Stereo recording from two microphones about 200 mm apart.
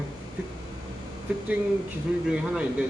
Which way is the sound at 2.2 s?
5° right (ahead or behind).